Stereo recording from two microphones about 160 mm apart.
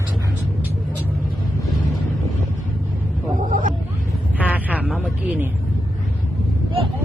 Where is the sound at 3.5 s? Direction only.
60° right (ahead or behind).